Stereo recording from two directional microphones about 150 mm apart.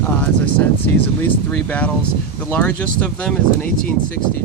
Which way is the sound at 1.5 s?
10° left (ahead or behind).